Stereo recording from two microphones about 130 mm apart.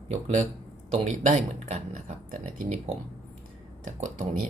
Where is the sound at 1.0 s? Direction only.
65° right (ahead or behind).